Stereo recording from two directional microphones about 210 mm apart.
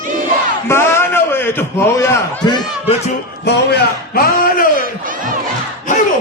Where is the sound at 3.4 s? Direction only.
50° left (ahead or behind).